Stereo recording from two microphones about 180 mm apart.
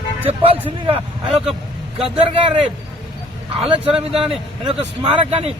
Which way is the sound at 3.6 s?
30° right (ahead or behind).